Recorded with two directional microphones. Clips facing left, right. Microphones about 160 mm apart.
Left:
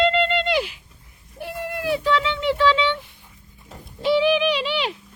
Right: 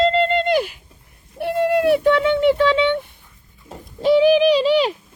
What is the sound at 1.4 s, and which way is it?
Speech, 65° right (ahead or behind).